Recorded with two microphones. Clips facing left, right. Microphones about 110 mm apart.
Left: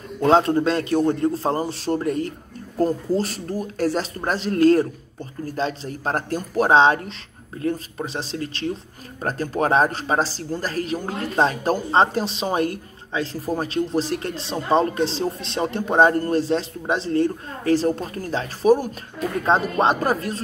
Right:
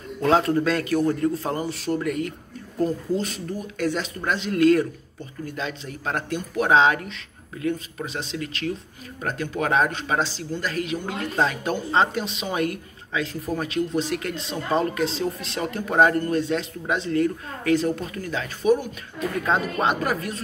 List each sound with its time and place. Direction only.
0.2 s a man's voice: 30° left (ahead or behind)